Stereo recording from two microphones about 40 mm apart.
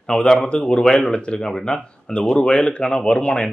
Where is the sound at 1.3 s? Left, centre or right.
Centre.